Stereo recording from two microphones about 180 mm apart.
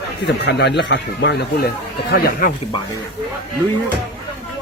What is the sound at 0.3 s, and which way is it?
Speech, 70° left (ahead or behind).